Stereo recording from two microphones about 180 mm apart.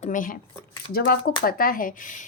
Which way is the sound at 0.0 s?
45° left (ahead or behind).